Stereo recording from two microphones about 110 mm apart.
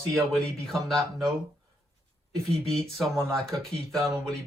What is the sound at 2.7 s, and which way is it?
Speech, centre (ahead or behind).